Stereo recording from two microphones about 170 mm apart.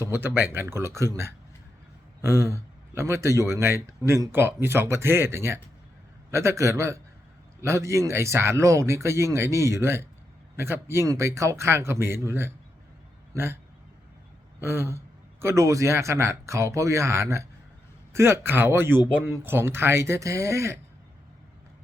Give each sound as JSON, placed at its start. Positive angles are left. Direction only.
{"t": 0.0, "sound": "speech", "side_deg": -15}
{"t": 14.6, "sound": "speech", "side_deg": -15}